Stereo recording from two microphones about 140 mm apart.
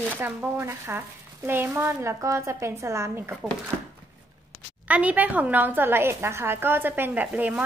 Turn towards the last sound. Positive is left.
turn(degrees=-10)  # may be behind; listen again after turning